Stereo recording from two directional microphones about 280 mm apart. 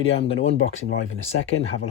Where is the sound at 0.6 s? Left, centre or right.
Left.